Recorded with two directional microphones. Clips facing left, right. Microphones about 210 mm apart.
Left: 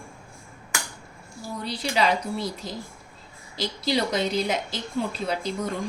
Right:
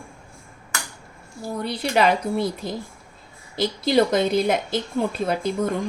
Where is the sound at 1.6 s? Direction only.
55° right (ahead or behind).